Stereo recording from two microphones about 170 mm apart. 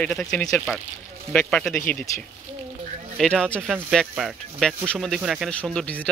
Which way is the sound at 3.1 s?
5° left (ahead or behind).